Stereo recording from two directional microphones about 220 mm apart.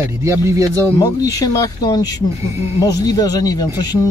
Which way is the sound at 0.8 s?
15° left (ahead or behind).